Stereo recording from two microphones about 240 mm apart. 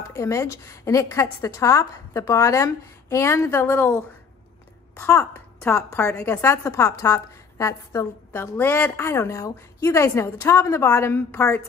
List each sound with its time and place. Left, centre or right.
0.1 s a woman's voice: centre